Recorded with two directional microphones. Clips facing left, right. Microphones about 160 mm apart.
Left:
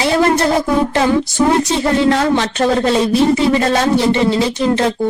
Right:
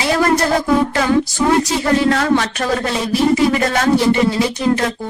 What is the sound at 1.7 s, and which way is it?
Speech, 25° left (ahead or behind).